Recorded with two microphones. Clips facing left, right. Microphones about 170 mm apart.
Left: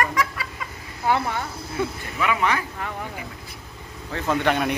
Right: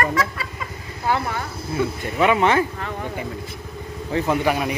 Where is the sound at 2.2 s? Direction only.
25° right (ahead or behind).